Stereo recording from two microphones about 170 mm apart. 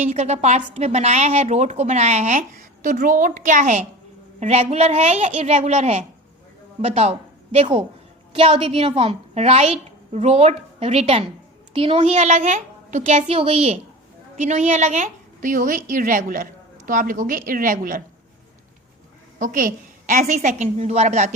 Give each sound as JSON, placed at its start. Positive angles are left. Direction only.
{"t": 0.0, "sound": "a woman's voice", "side_deg": -40}
{"t": 19.4, "sound": "a woman's voice", "side_deg": -55}